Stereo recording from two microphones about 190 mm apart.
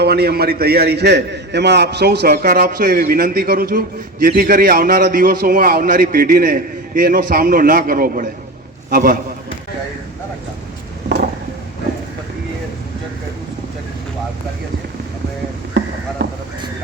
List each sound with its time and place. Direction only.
0.0 s a man's voice: 55° right (ahead or behind)